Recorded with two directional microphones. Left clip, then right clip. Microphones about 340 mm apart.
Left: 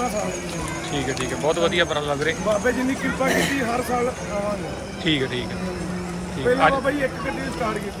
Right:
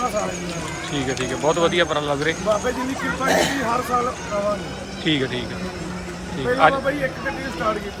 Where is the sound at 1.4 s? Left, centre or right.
Centre.